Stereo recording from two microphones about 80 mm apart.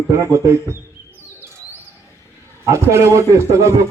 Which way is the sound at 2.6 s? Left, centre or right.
Right.